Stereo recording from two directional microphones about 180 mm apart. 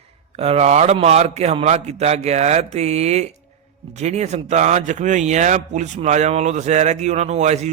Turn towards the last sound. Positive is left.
turn(degrees=-40)  # may be behind; listen again after turning